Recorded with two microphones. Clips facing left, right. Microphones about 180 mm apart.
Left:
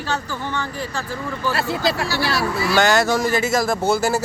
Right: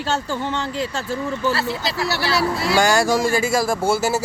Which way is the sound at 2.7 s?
10° right (ahead or behind).